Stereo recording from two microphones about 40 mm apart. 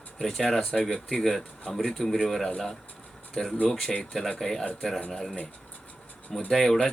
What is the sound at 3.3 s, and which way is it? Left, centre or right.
Speech, centre.